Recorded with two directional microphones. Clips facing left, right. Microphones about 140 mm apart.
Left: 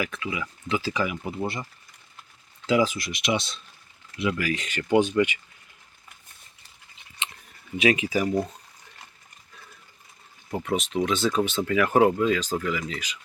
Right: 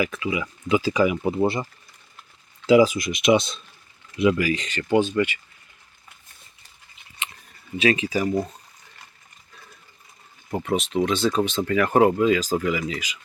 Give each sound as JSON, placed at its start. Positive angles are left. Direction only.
{"t": 0.0, "sound": "speech", "side_deg": -10}
{"t": 1.1, "sound": "speech", "side_deg": -25}
{"t": 2.6, "sound": "speech", "side_deg": -10}
{"t": 4.4, "sound": "speech", "side_deg": 5}
{"t": 7.8, "sound": "speech", "side_deg": 15}
{"t": 10.5, "sound": "speech", "side_deg": -5}